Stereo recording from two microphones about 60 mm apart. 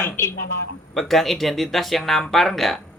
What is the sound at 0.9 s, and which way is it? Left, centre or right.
Speech, centre.